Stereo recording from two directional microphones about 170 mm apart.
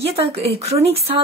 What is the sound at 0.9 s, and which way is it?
Speech, 35° right (ahead or behind).